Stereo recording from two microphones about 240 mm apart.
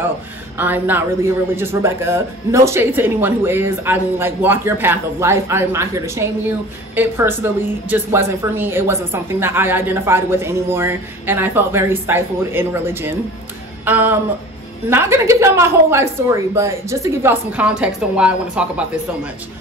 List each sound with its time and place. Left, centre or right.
0.6 s a man's voice: centre